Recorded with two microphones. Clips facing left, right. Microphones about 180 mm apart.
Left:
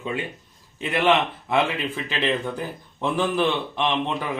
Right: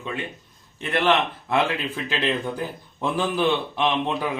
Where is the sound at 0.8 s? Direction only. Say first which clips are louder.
Left 1 dB; 5° left (ahead or behind).